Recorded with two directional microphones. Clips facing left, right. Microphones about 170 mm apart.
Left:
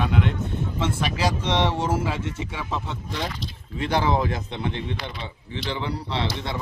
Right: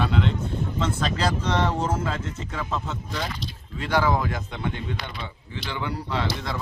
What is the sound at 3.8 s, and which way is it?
A man's voice, 25° left (ahead or behind).